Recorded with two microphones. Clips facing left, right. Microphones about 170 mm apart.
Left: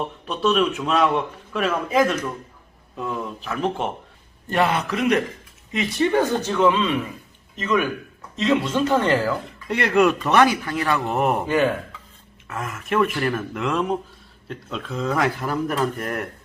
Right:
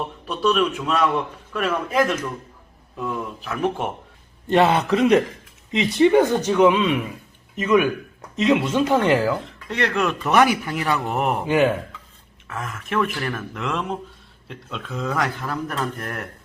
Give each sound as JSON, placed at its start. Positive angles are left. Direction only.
{"t": 0.3, "sound": "speech", "side_deg": 0}
{"t": 3.4, "sound": "speech", "side_deg": -5}
{"t": 4.4, "sound": "a man's voice", "side_deg": -25}
{"t": 5.7, "sound": "speech", "side_deg": -20}
{"t": 9.6, "sound": "speech", "side_deg": 10}
{"t": 10.3, "sound": "speech", "side_deg": -15}
{"t": 11.1, "sound": "speech", "side_deg": 0}
{"t": 11.4, "sound": "speech", "side_deg": -15}
{"t": 12.5, "sound": "speech", "side_deg": 5}